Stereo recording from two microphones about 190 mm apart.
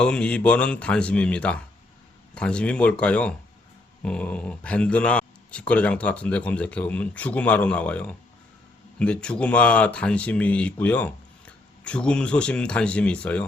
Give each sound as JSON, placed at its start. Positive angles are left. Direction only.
{"t": 0.0, "sound": "speech", "side_deg": 5}